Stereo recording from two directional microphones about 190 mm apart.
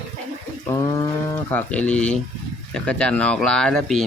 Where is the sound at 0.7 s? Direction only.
15° left (ahead or behind).